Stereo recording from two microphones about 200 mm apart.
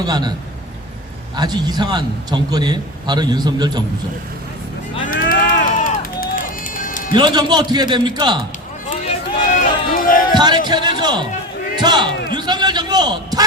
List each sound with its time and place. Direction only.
0.0 s a man's voice: 20° right (ahead or behind)
1.4 s a man's voice: 20° right (ahead or behind)
5.3 s run: 45° left (ahead or behind)
7.2 s a man's voice: 20° right (ahead or behind)
9.4 s run: 40° left (ahead or behind)
10.3 s a sound: 20° right (ahead or behind)
10.7 s a man's voice: 20° right (ahead or behind)